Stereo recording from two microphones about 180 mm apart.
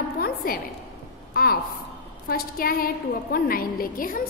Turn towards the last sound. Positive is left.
turn(degrees=50)  # may be behind; listen again after turning